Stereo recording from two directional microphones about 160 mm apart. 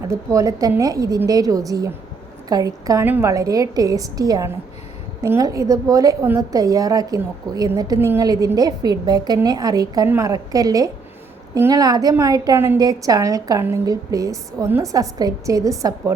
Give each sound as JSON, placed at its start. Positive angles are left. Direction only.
{"t": 0.1, "sound": "a woman's voice", "side_deg": -20}